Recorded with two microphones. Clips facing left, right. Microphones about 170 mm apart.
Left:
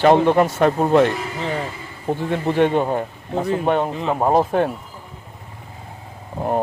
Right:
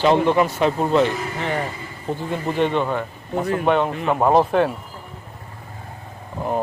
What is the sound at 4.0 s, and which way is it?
Speech, 30° left (ahead or behind).